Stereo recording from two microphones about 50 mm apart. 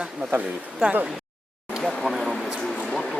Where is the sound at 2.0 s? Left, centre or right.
Centre.